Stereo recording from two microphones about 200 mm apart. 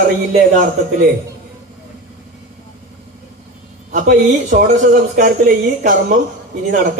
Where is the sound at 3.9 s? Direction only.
40° right (ahead or behind).